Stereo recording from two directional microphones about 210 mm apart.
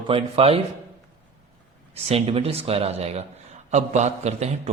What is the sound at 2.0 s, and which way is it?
A man's voice, 25° right (ahead or behind).